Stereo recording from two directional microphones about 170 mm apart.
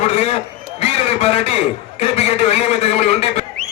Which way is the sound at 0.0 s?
40° left (ahead or behind).